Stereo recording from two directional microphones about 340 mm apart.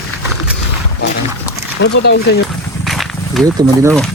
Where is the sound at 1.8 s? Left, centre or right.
Left.